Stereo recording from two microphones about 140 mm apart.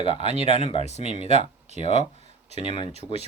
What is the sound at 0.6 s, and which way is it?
Speech, 45° left (ahead or behind).